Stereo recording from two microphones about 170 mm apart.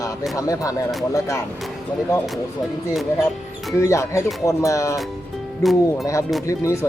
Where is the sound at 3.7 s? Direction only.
15° left (ahead or behind).